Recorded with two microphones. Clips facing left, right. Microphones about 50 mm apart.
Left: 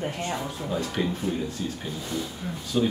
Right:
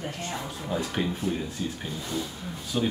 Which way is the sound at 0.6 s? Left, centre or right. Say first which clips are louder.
Even; centre.